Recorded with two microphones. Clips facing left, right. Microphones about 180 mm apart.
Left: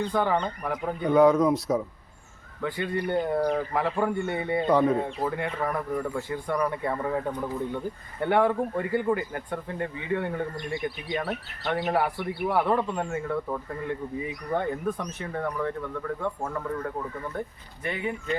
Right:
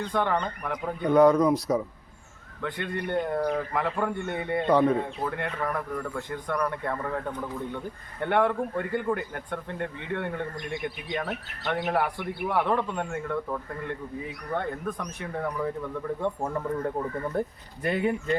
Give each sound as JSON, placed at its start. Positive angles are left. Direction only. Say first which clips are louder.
{"t": 0.1, "sound": "a man's voice", "louder": "left 1 dB", "side_deg": 5}
{"t": 17.8, "sound": "speech", "louder": "right 5 dB", "side_deg": -40}